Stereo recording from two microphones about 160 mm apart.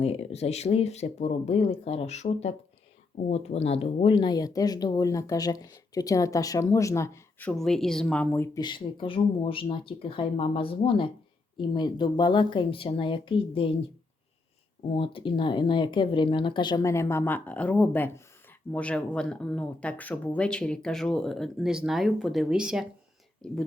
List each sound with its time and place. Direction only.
0.0 s speech: 40° left (ahead or behind); by 8.6 s 15° left (ahead or behind)
8.6 s speech: 30° left (ahead or behind)
14.9 s speech: 35° left (ahead or behind); by 22.9 s 5° right (ahead or behind)